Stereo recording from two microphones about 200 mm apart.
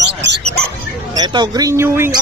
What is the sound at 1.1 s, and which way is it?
Speech, 20° right (ahead or behind).